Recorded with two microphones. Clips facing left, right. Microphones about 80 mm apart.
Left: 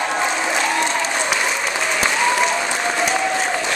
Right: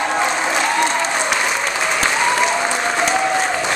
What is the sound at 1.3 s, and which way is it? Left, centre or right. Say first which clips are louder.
Applause: right 2 dB; centre.